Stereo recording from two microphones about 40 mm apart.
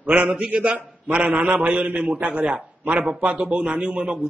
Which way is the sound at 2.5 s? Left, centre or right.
Right.